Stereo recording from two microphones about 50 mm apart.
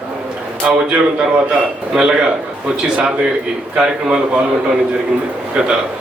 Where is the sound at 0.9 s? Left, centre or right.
Centre.